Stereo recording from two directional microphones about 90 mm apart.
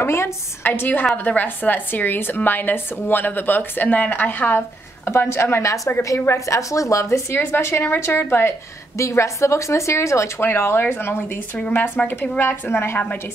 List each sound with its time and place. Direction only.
0.0 s a woman's voice: 30° left (ahead or behind)